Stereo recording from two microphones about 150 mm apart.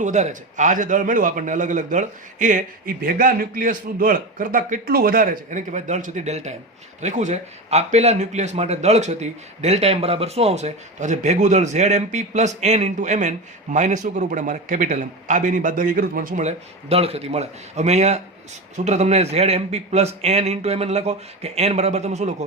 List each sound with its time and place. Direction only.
0.0 s a man's voice: 55° right (ahead or behind)